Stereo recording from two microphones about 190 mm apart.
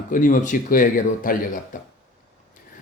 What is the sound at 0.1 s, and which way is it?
Speech, 45° left (ahead or behind).